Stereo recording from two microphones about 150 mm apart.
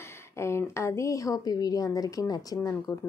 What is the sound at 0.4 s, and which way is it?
A woman's voice, 20° left (ahead or behind).